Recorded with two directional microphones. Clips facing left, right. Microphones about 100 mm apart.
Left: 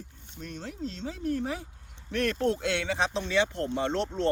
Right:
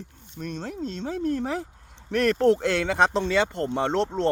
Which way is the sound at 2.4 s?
90° right.